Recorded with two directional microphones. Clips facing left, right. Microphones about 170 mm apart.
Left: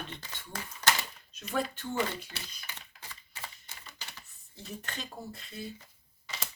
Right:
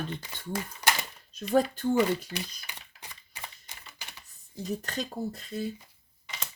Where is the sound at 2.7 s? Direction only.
15° right (ahead or behind).